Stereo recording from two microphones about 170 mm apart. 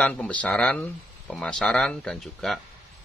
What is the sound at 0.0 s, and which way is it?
Speech, 10° left (ahead or behind).